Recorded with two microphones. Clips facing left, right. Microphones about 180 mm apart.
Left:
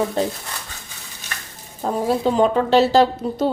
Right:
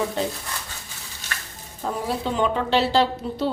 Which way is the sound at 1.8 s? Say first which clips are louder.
Left 7 dB; 40° left (ahead or behind).